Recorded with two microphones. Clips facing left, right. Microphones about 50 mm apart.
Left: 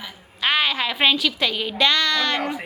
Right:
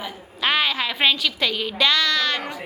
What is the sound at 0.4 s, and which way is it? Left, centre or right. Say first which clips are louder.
A woman's voice: even; centre.